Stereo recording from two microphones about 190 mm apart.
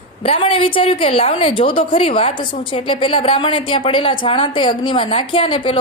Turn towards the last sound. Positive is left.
turn(degrees=25)  # may be behind; listen again after turning